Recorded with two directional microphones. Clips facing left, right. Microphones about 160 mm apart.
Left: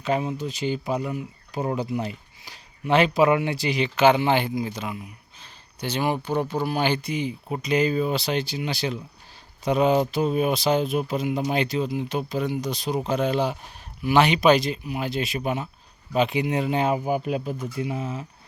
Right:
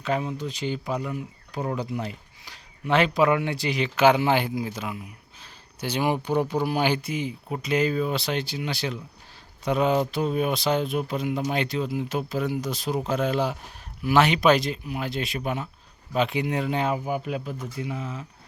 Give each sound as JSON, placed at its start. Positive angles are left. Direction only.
{"t": 0.0, "sound": "speech", "side_deg": 5}
{"t": 16.8, "sound": "speech", "side_deg": 20}